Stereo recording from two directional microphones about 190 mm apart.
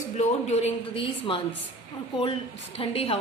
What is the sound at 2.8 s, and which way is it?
Speech, 30° left (ahead or behind).